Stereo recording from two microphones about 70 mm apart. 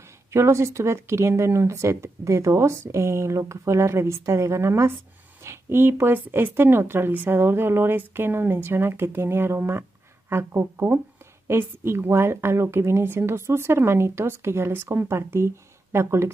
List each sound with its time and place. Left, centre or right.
0.3 s a woman's voice: right